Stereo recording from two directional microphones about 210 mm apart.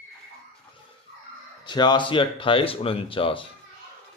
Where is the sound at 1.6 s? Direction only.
20° left (ahead or behind).